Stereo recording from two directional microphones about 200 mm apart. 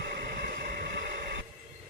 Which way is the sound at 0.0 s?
45° right (ahead or behind).